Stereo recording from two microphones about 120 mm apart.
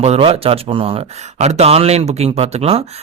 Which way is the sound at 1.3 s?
65° right (ahead or behind).